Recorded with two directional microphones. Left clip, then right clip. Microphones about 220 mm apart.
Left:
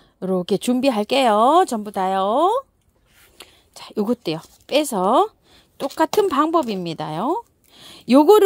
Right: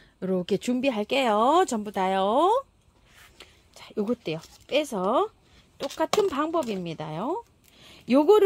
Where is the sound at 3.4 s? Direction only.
45° left (ahead or behind).